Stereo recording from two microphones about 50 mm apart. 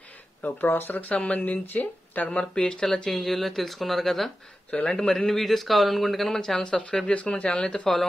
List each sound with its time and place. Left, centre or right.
0.4 s speech: left
1.1 s speech: left
2.6 s speech: centre
4.8 s speech: centre
5.1 s speech: centre